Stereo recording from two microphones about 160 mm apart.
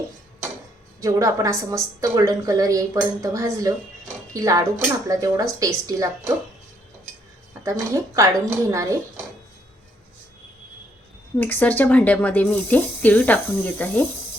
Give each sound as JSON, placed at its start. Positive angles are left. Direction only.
{"t": 1.0, "sound": "a woman's voice", "side_deg": -20}
{"t": 7.6, "sound": "a woman's voice", "side_deg": -20}
{"t": 11.3, "sound": "speech", "side_deg": 10}